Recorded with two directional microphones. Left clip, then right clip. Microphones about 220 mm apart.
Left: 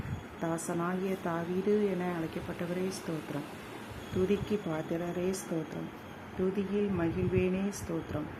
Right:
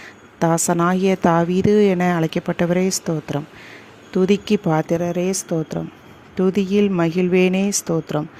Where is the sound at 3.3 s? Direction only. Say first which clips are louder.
Right 11 dB; 45° right (ahead or behind).